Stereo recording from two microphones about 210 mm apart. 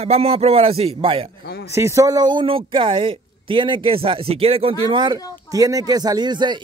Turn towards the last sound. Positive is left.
turn(degrees=-20)  # may be behind; listen again after turning